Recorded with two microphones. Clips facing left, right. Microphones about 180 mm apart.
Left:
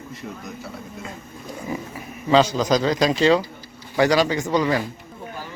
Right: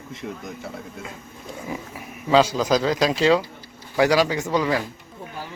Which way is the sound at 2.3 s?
5° right (ahead or behind).